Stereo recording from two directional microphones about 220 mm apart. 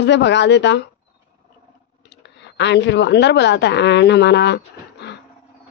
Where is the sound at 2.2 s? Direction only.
55° left (ahead or behind).